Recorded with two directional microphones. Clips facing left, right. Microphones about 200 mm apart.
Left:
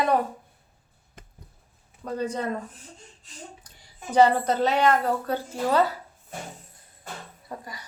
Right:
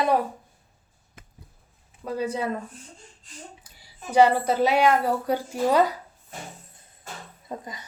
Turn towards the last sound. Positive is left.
turn(degrees=-20)  # may be behind; listen again after turning